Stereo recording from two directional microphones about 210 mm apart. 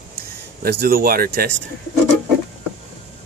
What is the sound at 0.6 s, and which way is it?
Speech, 45° right (ahead or behind).